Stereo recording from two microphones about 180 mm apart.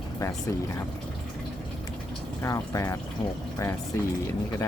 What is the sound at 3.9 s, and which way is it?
Speech, 15° left (ahead or behind).